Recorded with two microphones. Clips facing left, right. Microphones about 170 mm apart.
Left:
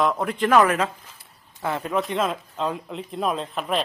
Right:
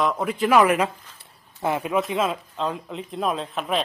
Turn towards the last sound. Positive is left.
turn(degrees=0)  # may be behind; listen again after turning